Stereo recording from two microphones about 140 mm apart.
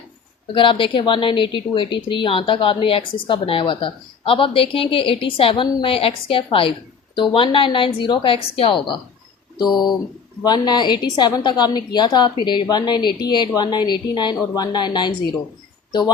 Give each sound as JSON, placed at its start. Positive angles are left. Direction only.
{"t": 0.5, "sound": "a woman's voice", "side_deg": 40}
{"t": 10.4, "sound": "a woman's voice", "side_deg": 30}